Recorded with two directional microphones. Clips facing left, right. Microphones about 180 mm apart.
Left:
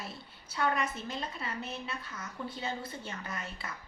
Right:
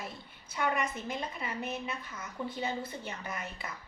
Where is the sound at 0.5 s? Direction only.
20° right (ahead or behind).